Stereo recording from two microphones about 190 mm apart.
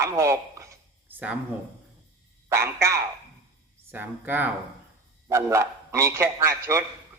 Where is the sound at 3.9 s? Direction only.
10° right (ahead or behind).